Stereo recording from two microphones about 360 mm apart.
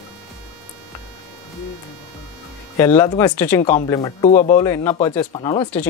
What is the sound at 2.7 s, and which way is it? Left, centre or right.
Speech, centre.